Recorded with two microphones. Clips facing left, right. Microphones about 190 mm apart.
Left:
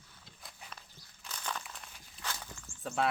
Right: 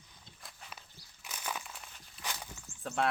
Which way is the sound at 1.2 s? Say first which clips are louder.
Even; 10° right (ahead or behind).